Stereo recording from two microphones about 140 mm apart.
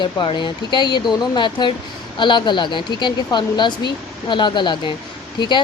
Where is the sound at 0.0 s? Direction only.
35° left (ahead or behind).